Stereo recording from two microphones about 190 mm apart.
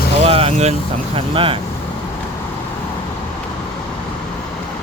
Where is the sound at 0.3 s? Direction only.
30° right (ahead or behind).